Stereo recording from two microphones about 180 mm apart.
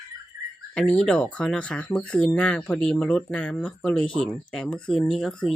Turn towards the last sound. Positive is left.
turn(degrees=0)  # may be behind; listen again after turning